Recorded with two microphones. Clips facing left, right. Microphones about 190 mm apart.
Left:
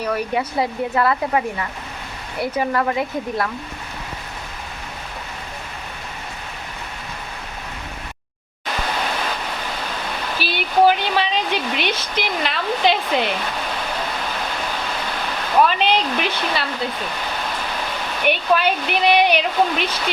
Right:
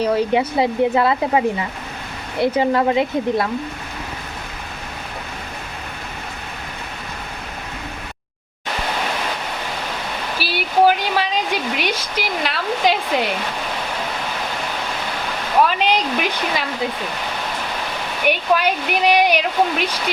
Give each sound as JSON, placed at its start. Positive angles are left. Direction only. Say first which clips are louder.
{"t": 0.0, "sound": "speech", "louder": "right 5 dB", "side_deg": -25}
{"t": 10.3, "sound": "speech", "louder": "even", "side_deg": -10}
{"t": 15.6, "sound": "speech", "louder": "even", "side_deg": -10}
{"t": 18.3, "sound": "speech", "louder": "even", "side_deg": -10}